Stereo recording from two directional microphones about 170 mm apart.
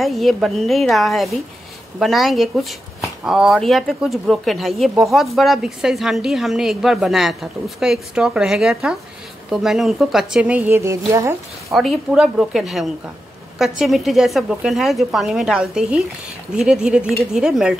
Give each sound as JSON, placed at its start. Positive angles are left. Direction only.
{"t": 0.0, "sound": "speech", "side_deg": 0}
{"t": 11.7, "sound": "speech", "side_deg": 0}